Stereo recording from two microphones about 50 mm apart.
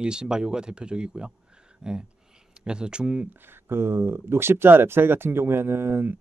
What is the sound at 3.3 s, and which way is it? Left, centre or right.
Speech, right.